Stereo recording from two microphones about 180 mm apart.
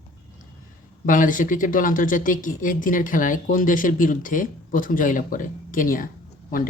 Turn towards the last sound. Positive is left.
turn(degrees=50)  # may be behind; listen again after turning